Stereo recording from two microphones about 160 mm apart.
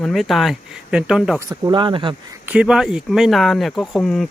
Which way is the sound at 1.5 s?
25° right (ahead or behind).